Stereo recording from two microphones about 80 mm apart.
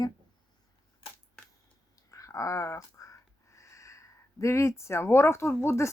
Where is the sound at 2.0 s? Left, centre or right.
Left.